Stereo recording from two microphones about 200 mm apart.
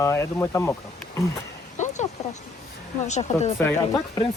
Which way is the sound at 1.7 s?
35° left (ahead or behind).